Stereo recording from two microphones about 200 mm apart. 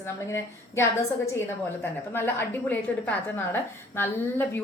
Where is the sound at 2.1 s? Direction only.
10° left (ahead or behind).